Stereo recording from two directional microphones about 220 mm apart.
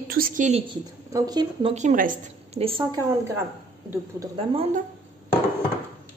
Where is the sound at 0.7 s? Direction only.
15° right (ahead or behind).